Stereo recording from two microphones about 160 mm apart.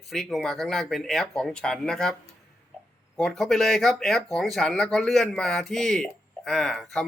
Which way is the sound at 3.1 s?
Centre (ahead or behind).